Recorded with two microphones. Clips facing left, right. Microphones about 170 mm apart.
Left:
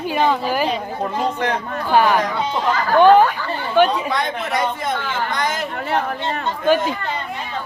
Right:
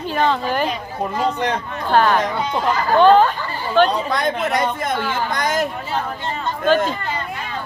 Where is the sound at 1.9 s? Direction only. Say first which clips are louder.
Even; 10° left (ahead or behind).